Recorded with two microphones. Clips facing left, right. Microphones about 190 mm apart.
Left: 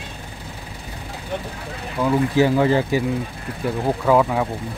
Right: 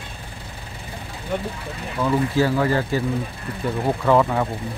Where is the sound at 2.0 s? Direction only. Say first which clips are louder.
Left 2 dB; 15° left (ahead or behind).